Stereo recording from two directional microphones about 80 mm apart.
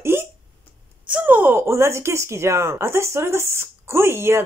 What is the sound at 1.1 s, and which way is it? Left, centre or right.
Speech, right.